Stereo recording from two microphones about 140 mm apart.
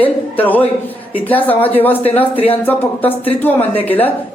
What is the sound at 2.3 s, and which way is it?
Speech, 40° left (ahead or behind).